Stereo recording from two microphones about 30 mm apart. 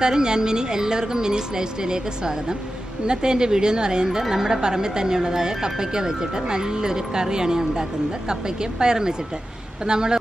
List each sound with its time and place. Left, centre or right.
0.0 s speech: right